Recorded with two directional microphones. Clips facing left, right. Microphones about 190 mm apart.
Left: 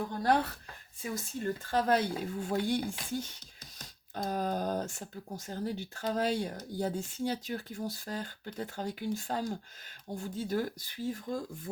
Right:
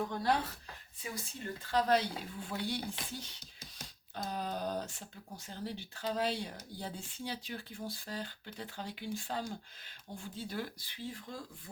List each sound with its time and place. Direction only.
0.2 s speech: 55° left (ahead or behind)
1.6 s speech: 50° left (ahead or behind)